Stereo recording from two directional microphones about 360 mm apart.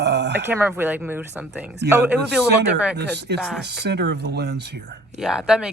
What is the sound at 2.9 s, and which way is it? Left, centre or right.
Speech, right.